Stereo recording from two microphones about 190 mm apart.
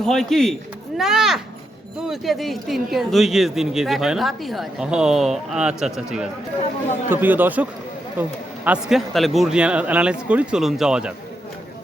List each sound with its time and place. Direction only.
0.0 s speech: centre (ahead or behind)